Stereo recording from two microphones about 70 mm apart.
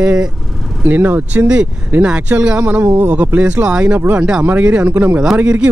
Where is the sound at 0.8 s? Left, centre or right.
Right.